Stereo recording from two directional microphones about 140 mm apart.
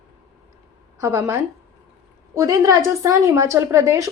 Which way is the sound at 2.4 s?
20° right (ahead or behind).